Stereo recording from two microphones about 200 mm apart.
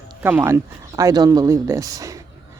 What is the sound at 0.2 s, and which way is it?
A woman's voice, 10° right (ahead or behind).